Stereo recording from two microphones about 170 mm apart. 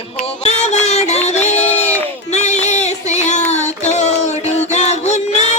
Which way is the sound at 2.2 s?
45° left (ahead or behind).